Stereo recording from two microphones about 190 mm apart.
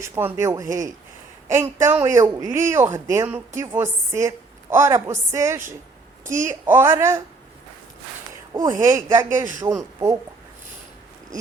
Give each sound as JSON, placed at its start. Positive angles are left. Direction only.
{"t": 0.0, "sound": "speech", "side_deg": -15}
{"t": 6.2, "sound": "a woman's voice", "side_deg": -40}
{"t": 6.5, "sound": "speech", "side_deg": -10}
{"t": 8.5, "sound": "speech", "side_deg": -15}
{"t": 9.4, "sound": "a man's voice", "side_deg": -45}